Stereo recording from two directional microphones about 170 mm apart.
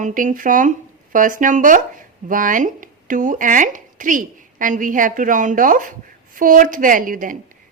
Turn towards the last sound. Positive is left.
turn(degrees=-55)  # may be behind; listen again after turning